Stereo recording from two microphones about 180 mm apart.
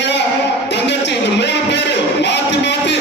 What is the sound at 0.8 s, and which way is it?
Music, 75° left (ahead or behind).